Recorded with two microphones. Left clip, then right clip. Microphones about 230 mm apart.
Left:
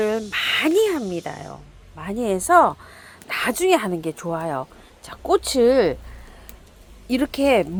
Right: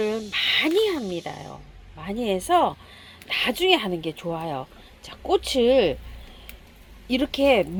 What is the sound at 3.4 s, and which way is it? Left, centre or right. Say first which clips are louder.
Speech: left 2 dB; left.